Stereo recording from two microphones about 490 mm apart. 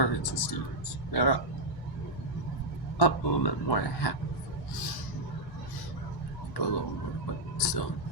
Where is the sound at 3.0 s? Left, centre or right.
Left.